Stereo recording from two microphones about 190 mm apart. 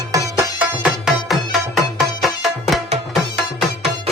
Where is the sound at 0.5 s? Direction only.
5° right (ahead or behind).